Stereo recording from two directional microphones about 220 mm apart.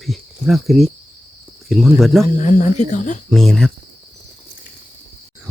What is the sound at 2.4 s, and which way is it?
Speech, 35° left (ahead or behind).